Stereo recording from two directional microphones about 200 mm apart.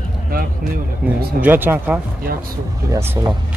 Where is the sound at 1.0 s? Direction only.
5° right (ahead or behind).